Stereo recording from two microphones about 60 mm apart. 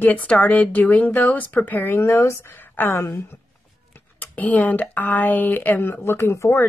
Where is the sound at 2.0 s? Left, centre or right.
Left.